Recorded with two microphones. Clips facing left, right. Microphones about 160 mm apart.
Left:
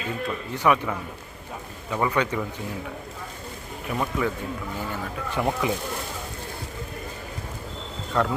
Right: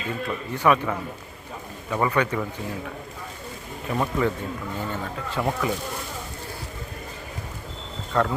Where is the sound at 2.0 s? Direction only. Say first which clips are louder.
Right 1 dB; 15° left (ahead or behind).